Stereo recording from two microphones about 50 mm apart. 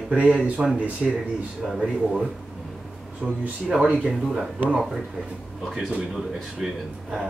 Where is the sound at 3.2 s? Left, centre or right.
Right; by 5.0 s centre.